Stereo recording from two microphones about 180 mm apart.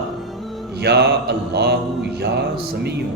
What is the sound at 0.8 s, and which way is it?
Mantra, 65° right (ahead or behind).